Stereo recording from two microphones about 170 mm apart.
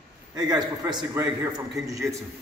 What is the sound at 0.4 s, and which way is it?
A man's voice, 25° right (ahead or behind).